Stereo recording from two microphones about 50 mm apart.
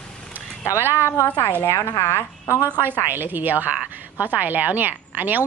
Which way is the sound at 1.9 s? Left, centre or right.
Left.